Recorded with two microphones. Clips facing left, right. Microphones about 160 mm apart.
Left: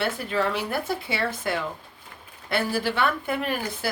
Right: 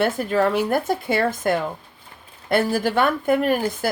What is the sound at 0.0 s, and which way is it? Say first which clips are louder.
Speech: right 6 dB; 45° right (ahead or behind).